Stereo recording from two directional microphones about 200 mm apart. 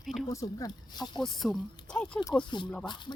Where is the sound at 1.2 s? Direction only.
Centre (ahead or behind).